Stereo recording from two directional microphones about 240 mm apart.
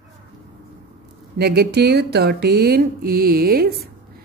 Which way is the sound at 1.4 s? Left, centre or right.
Right.